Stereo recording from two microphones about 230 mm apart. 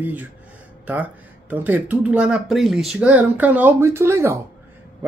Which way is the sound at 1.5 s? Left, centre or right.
Centre.